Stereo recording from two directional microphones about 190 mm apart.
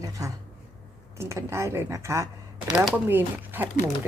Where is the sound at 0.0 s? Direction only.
20° right (ahead or behind).